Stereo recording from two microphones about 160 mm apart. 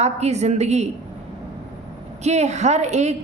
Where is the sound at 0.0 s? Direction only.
45° right (ahead or behind).